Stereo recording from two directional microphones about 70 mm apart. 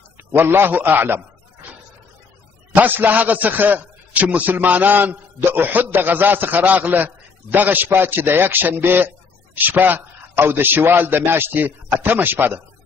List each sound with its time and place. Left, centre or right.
0.2 s a man's voice: right
2.7 s a man's voice: right